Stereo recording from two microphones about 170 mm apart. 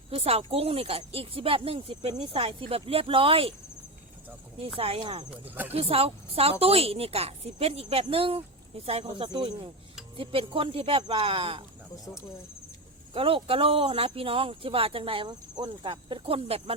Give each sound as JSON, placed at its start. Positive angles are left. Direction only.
{"t": 0.1, "sound": "a woman's voice", "side_deg": -35}
{"t": 4.8, "sound": "a woman's voice", "side_deg": -35}
{"t": 5.3, "sound": "speech", "side_deg": -10}
{"t": 5.7, "sound": "a woman's voice", "side_deg": -35}
{"t": 13.1, "sound": "a woman's voice", "side_deg": -35}